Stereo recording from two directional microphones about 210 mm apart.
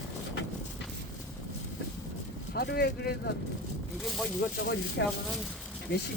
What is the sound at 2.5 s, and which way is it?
Speech, 50° left (ahead or behind).